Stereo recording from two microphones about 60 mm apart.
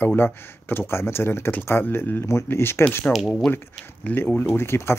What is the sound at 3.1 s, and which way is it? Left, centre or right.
Speech, centre.